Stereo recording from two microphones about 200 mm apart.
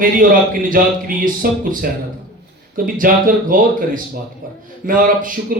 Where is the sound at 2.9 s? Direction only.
45° right (ahead or behind).